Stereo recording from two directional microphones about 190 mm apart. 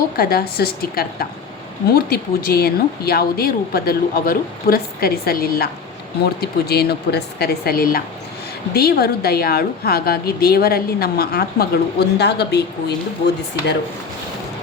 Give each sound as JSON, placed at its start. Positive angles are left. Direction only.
{"t": 0.2, "sound": "a woman's voice", "side_deg": 55}